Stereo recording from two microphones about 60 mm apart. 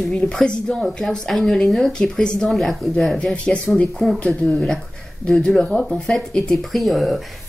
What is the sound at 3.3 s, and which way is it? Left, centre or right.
A woman's voice, centre.